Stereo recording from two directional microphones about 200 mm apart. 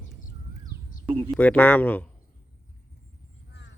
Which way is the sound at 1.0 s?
25° right (ahead or behind).